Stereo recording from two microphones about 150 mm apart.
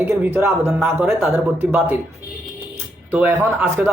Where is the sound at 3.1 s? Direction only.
15° right (ahead or behind).